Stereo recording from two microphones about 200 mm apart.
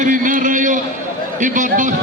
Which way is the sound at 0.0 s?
40° right (ahead or behind).